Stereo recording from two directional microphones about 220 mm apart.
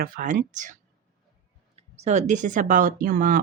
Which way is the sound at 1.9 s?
30° right (ahead or behind).